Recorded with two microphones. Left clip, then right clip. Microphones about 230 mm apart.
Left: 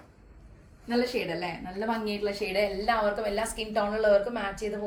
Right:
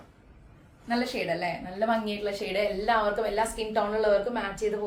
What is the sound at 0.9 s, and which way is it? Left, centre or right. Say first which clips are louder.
A woman's voice: even; centre.